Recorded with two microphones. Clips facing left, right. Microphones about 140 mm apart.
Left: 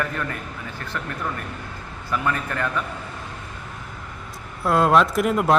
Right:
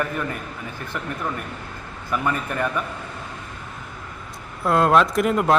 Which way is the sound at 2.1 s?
15° right (ahead or behind).